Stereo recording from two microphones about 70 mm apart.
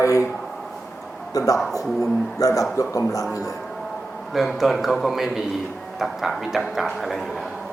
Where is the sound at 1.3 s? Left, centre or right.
Left.